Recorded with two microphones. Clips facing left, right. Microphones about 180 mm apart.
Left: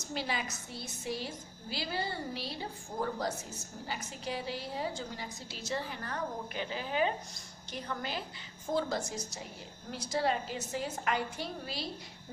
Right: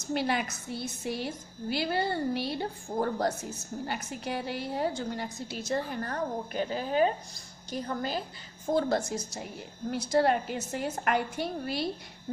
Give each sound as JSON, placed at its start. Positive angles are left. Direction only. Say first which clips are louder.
{"t": 0.1, "sound": "a woman's voice", "louder": "right 7 dB", "side_deg": -60}
{"t": 8.7, "sound": "a woman's voice", "louder": "right 5 dB", "side_deg": -55}